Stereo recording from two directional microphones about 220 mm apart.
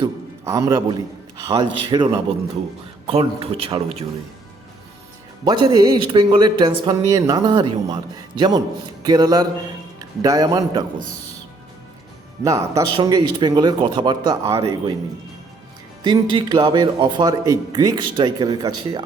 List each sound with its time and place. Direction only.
0.0 s music: 15° right (ahead or behind)
1.4 s speech: 15° right (ahead or behind)
3.1 s speech: 25° right (ahead or behind)
5.5 s a man's voice: 20° right (ahead or behind)
12.5 s speech: 15° right (ahead or behind)
16.0 s speech: 20° right (ahead or behind)